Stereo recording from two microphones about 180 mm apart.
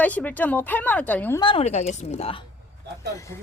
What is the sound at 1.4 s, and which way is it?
Speech, 30° left (ahead or behind).